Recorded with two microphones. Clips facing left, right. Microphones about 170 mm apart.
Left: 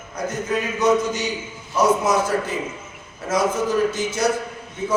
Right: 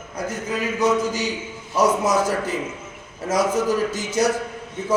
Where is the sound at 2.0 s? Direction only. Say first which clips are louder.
Even; 40° right (ahead or behind).